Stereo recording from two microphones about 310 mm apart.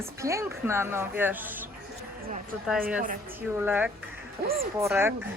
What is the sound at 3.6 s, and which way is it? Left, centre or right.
Speech, centre.